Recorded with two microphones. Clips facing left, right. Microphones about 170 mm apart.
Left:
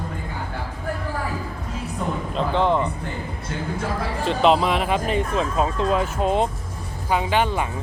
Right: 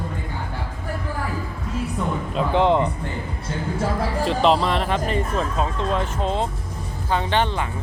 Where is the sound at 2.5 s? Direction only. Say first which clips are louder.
Right 2 dB; 20° right (ahead or behind).